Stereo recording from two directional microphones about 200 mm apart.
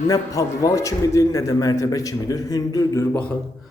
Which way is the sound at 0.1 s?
15° left (ahead or behind).